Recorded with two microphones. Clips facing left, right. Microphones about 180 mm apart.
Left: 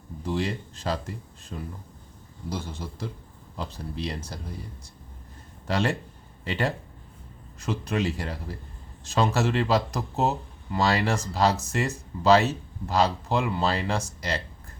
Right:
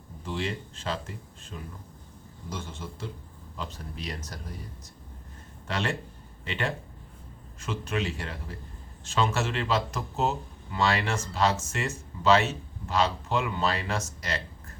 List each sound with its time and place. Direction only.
0.3 s speech: 40° left (ahead or behind)
5.6 s speech: 35° left (ahead or behind)